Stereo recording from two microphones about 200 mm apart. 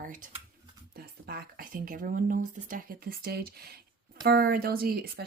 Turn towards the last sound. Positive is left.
turn(degrees=-50)  # may be behind; listen again after turning